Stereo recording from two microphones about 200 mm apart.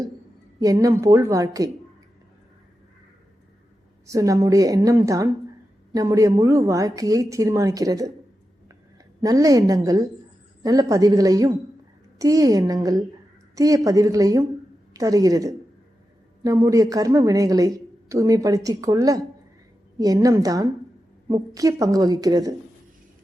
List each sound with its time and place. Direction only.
0.6 s speech: 15° right (ahead or behind)
4.0 s speech: 15° right (ahead or behind)
9.2 s speech: 15° right (ahead or behind)